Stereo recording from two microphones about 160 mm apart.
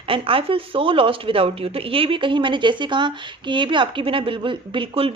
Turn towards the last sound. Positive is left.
turn(degrees=-35)  # may be behind; listen again after turning